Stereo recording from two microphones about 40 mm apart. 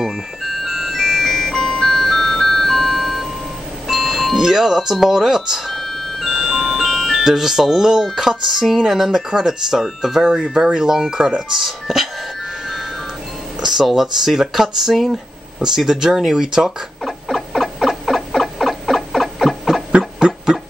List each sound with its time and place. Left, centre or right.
0.0 s music: centre
1.3 s music: centre
3.8 s speech: centre
5.7 s music: centre
6.2 s music: centre
6.8 s music: centre
7.2 s speech: centre
13.7 s speech: centre
17.0 s a sound: centre
19.9 s a sound: right